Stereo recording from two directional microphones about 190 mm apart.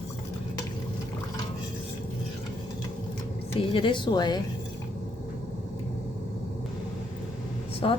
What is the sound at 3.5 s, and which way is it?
Speech, 25° left (ahead or behind).